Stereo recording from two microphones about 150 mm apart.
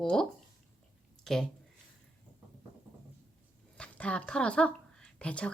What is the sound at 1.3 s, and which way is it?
Speech, 5° left (ahead or behind).